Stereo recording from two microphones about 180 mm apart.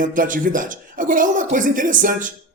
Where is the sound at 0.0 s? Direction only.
50° right (ahead or behind).